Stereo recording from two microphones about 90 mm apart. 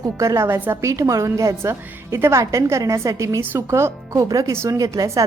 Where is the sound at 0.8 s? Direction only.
35° right (ahead or behind).